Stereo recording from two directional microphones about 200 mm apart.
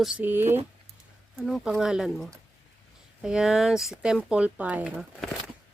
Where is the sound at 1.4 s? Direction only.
Centre (ahead or behind).